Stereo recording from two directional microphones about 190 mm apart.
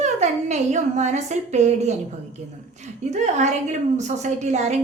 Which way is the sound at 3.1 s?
35° right (ahead or behind).